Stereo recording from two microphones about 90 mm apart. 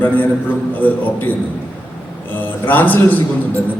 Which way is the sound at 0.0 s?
20° left (ahead or behind).